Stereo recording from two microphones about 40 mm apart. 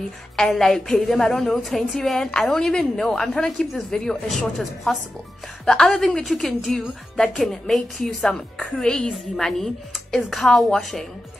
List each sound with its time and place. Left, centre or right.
0.4 s a woman's voice: centre
2.5 s a woman's voice: centre
3.9 s a woman's voice: centre
4.3 s a woman's voice: centre